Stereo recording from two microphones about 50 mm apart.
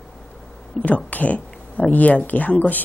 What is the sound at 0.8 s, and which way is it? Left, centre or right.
A woman's voice, left.